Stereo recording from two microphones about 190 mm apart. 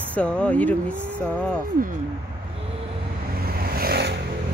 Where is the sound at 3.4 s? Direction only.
55° right (ahead or behind).